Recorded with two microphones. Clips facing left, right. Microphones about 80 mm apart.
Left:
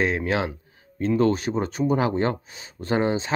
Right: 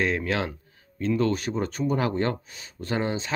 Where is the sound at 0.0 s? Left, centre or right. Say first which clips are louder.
Left 2 dB; left.